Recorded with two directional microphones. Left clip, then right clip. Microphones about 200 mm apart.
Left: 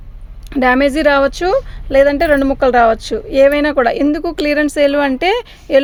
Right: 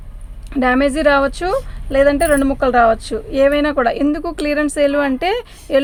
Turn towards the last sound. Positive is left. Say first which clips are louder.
# left 4 dB
turn(degrees=40)  # may be behind; listen again after turning